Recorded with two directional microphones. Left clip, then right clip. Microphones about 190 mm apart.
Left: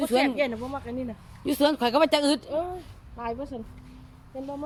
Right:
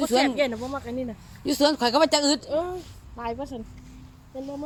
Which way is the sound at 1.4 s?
15° right (ahead or behind).